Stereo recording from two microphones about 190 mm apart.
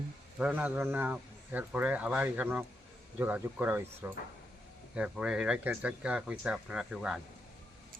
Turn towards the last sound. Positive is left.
turn(degrees=-5)  # may be behind; listen again after turning